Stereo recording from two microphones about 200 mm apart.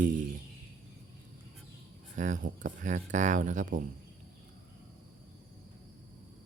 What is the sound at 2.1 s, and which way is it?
Speech, 40° right (ahead or behind).